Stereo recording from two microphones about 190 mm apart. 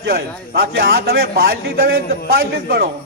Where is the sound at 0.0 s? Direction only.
55° right (ahead or behind).